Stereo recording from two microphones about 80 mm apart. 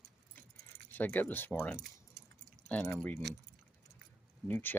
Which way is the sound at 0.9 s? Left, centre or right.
Left.